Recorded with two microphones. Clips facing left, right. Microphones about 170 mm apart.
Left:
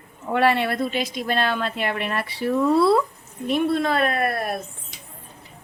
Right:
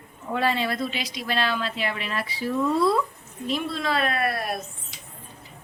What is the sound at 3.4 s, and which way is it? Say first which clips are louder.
A woman's voice: left 6 dB; 55° left (ahead or behind).